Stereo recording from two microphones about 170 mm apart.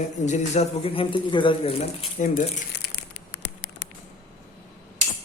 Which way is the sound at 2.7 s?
75° left (ahead or behind).